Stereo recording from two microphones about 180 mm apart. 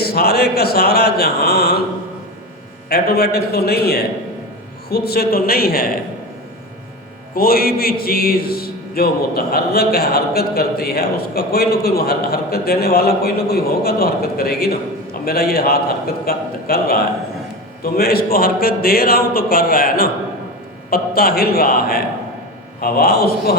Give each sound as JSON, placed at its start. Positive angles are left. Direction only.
{"t": 0.0, "sound": "a man's voice", "side_deg": 60}
{"t": 2.9, "sound": "a man's voice", "side_deg": 60}
{"t": 7.3, "sound": "a man's voice", "side_deg": 55}